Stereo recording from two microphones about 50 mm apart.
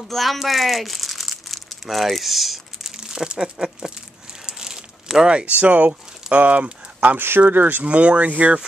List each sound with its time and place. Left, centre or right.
0.1 s speech: centre
3.0 s crumpling: centre
5.4 s speech: right
7.2 s speech: right
7.8 s speech: right